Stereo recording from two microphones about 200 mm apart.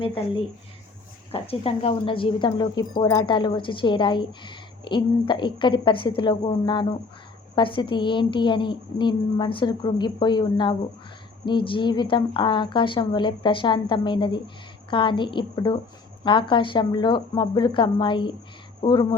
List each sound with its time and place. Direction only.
0.0 s speech: 25° left (ahead or behind)